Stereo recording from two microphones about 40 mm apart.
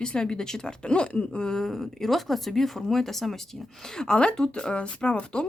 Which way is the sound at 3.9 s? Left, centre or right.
Centre.